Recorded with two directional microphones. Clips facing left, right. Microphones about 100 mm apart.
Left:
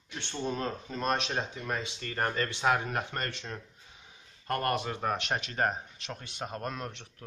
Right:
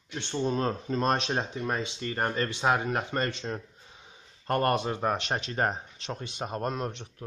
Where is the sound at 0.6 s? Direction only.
35° right (ahead or behind).